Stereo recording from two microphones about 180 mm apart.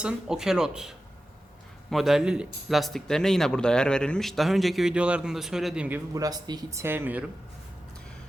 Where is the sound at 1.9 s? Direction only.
Centre (ahead or behind).